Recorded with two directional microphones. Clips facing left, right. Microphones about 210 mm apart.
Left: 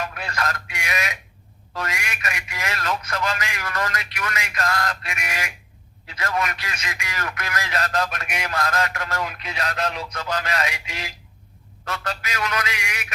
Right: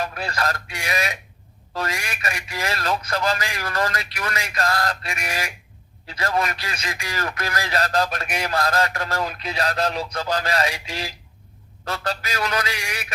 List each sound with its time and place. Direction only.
0.0 s a man's voice: 35° right (ahead or behind)